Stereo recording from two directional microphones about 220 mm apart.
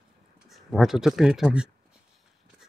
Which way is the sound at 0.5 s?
Centre (ahead or behind).